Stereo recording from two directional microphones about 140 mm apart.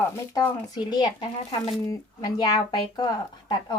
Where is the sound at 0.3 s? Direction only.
25° left (ahead or behind).